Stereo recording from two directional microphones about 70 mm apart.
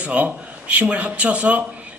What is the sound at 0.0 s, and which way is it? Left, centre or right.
A man's voice, right.